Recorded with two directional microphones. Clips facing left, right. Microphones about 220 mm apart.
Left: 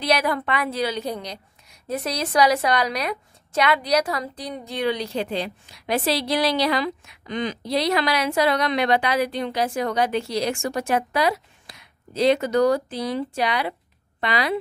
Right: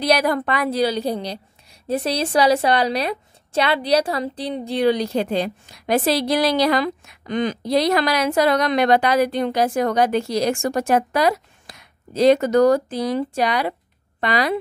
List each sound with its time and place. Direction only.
0.0 s a woman's voice: 40° right (ahead or behind)